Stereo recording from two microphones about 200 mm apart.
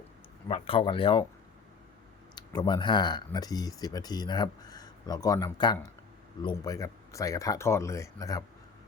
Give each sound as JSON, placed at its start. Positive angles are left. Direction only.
{"t": 0.4, "sound": "speech", "side_deg": 25}
{"t": 2.3, "sound": "speech", "side_deg": 20}